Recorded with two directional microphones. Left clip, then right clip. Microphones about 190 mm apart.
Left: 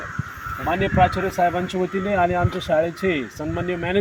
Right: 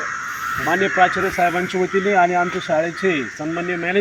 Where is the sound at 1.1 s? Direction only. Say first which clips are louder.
Right 2 dB; 40° left (ahead or behind).